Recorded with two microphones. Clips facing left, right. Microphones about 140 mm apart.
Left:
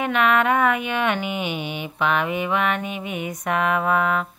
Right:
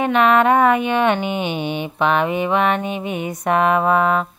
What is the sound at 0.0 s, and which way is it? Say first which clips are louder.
Speech: right 5 dB; 30° right (ahead or behind).